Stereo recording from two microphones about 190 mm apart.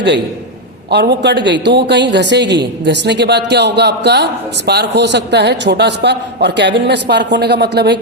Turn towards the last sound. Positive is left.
turn(degrees=-60)  # may be behind; listen again after turning